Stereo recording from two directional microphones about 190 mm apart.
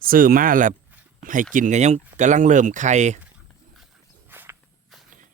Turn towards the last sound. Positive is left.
turn(degrees=-10)  # may be behind; listen again after turning